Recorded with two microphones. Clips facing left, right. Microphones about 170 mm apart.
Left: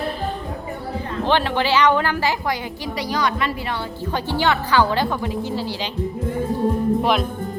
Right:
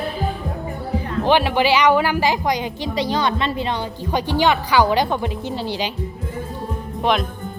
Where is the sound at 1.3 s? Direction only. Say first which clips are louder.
Right 3 dB; 10° right (ahead or behind).